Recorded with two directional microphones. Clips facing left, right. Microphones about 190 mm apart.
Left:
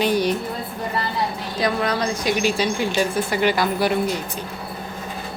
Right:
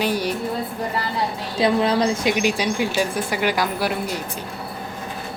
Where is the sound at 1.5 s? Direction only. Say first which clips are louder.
Right 4 dB; 25° right (ahead or behind); by 3.9 s 10° right (ahead or behind).